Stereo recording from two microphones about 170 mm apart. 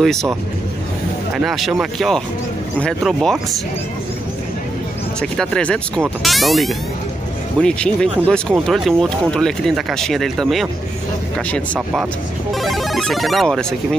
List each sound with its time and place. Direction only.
0.0 s speech: centre (ahead or behind)
1.3 s speech: centre (ahead or behind)
5.2 s speech: 5° left (ahead or behind)
12.5 s speech: centre (ahead or behind)